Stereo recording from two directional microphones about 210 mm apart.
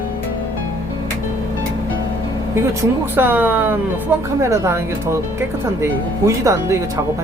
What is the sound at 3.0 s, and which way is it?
Speech, 10° right (ahead or behind).